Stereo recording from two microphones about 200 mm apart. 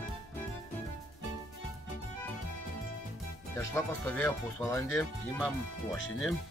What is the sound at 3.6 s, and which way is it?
Speech, 10° left (ahead or behind).